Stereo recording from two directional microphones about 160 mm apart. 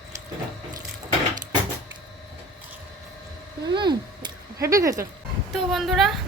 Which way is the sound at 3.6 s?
30° right (ahead or behind).